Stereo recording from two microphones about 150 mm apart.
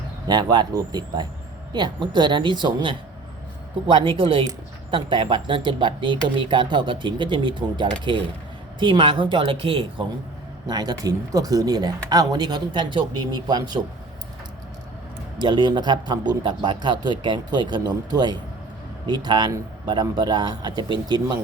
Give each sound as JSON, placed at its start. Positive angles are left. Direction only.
{"t": 0.3, "sound": "speech", "side_deg": -30}
{"t": 10.7, "sound": "speech", "side_deg": -25}
{"t": 15.4, "sound": "speech", "side_deg": -30}